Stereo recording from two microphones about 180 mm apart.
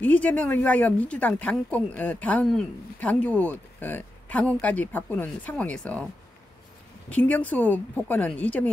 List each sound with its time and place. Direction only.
0.0 s a woman's voice: 10° left (ahead or behind)
7.1 s a woman's voice: 10° left (ahead or behind)